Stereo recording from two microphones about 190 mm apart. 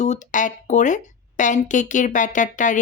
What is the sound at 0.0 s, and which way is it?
Speech, 40° left (ahead or behind).